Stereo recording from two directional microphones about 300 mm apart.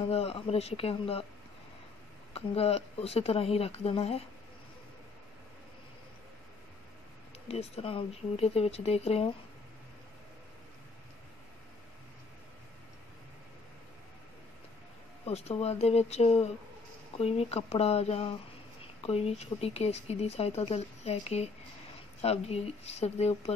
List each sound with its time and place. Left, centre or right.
0.0 s speech: centre
2.3 s speech: centre
7.4 s speech: centre
15.2 s speech: left